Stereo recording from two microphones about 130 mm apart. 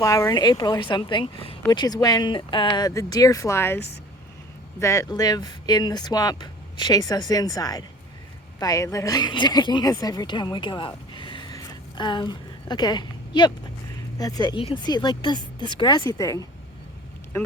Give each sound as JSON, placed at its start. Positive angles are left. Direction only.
{"t": 0.0, "sound": "speech", "side_deg": 25}
{"t": 1.7, "sound": "speech", "side_deg": 30}
{"t": 4.8, "sound": "a woman's voice", "side_deg": 25}
{"t": 11.5, "sound": "a sound", "side_deg": 35}
{"t": 14.2, "sound": "speech", "side_deg": 30}